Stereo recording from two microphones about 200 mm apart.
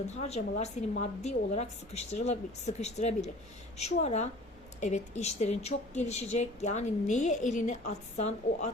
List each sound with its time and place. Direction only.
0.1 s speech: 35° left (ahead or behind)